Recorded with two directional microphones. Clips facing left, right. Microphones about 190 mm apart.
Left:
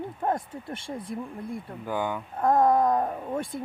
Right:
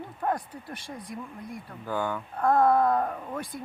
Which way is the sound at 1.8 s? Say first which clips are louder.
Even; 15° left (ahead or behind).